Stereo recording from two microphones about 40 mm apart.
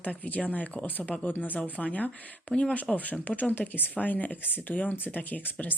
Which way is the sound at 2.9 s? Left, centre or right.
Centre.